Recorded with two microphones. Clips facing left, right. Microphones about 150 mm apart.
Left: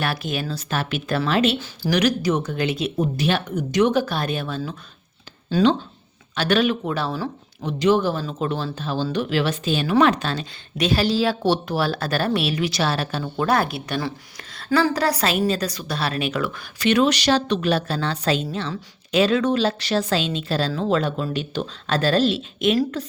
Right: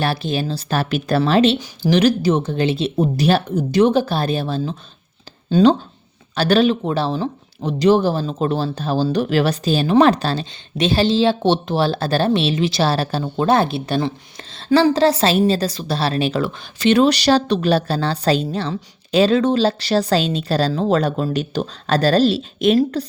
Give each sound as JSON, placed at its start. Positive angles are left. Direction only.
{"t": 0.0, "sound": "speech", "side_deg": -30}
{"t": 1.5, "sound": "speech", "side_deg": -15}
{"t": 1.9, "sound": "speech", "side_deg": -30}
{"t": 6.3, "sound": "speech", "side_deg": -35}